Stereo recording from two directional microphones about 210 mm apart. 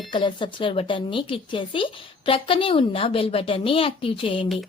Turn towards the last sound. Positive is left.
turn(degrees=25)  # may be behind; listen again after turning